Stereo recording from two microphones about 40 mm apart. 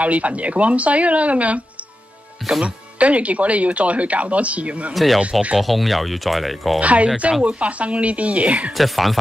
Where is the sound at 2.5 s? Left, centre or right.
Centre.